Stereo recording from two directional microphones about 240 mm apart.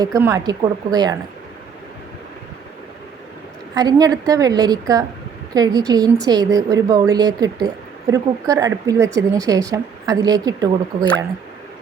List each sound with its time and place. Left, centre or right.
0.0 s a woman's voice: centre
3.8 s a woman's voice: centre